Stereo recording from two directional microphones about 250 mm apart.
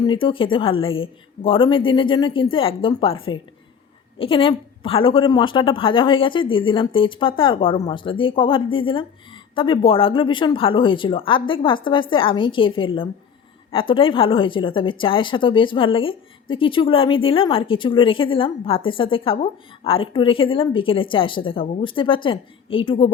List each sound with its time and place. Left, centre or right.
0.1 s a woman's voice: centre
4.2 s a woman's voice: left